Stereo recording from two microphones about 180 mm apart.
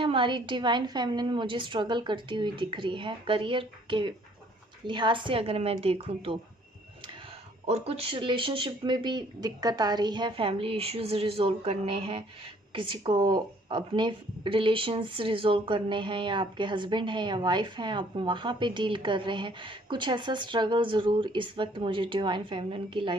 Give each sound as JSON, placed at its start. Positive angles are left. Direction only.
{"t": 0.0, "sound": "a woman's voice", "side_deg": -30}
{"t": 7.7, "sound": "a woman's voice", "side_deg": -35}